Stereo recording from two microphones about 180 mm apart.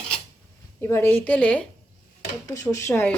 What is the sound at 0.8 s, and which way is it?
A woman's voice, 15° left (ahead or behind).